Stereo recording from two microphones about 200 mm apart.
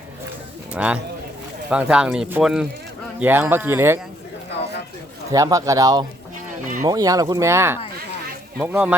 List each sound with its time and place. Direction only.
0.7 s speech: 5° right (ahead or behind)
5.3 s speech: 15° right (ahead or behind)